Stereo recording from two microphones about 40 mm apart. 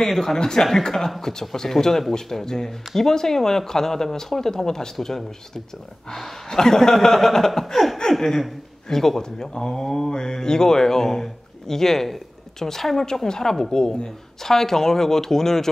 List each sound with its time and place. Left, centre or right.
0.0 s speech: centre
6.5 s speech: centre